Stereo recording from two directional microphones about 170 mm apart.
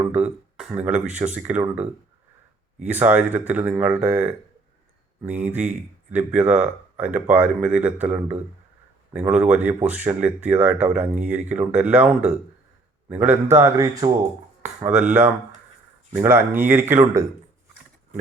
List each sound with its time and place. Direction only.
0.1 s speech: 5° right (ahead or behind)
2.8 s speech: 10° right (ahead or behind)
14.8 s speech: 10° right (ahead or behind)